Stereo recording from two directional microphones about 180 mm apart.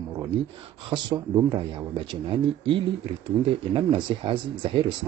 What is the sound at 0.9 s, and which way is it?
Speech, 25° right (ahead or behind).